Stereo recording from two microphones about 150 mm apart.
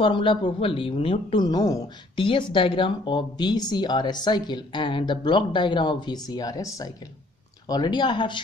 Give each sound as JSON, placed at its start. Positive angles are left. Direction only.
{"t": 0.0, "sound": "speech", "side_deg": 35}